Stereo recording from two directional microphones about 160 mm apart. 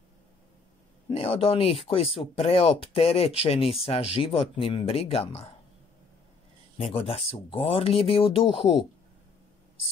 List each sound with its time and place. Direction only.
1.1 s speech: 35° left (ahead or behind)
6.8 s speech: 35° left (ahead or behind)